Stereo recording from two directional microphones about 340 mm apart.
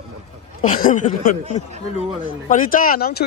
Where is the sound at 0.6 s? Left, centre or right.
Left.